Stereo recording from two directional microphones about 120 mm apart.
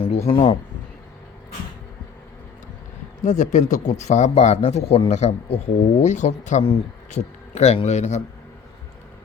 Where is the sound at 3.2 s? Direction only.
80° left.